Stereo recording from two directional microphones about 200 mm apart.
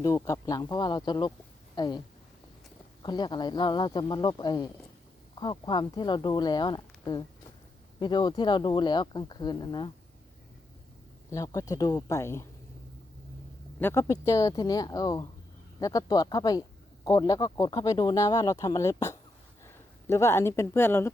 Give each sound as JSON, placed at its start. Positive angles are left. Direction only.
{"t": 0.0, "sound": "speech", "side_deg": 20}
{"t": 3.0, "sound": "speech", "side_deg": 20}
{"t": 11.3, "sound": "speech", "side_deg": 15}
{"t": 13.7, "sound": "speech", "side_deg": 10}